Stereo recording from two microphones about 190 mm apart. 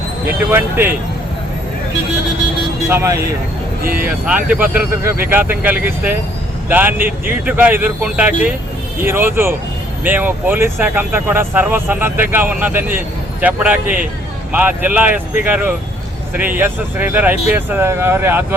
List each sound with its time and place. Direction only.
0.5 s speech: 10° right (ahead or behind)
2.9 s speech: 15° right (ahead or behind)